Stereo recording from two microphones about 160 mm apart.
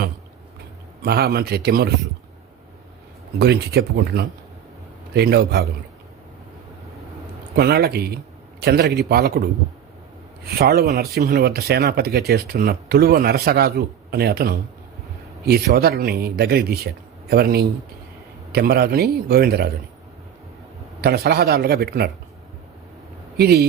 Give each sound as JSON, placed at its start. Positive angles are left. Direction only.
{"t": 1.0, "sound": "speech", "side_deg": -75}
{"t": 3.3, "sound": "speech", "side_deg": -90}
{"t": 5.1, "sound": "a man's voice", "side_deg": -90}
{"t": 7.5, "sound": "speech", "side_deg": -80}
{"t": 21.0, "sound": "speech", "side_deg": -75}
{"t": 23.4, "sound": "speech", "side_deg": -80}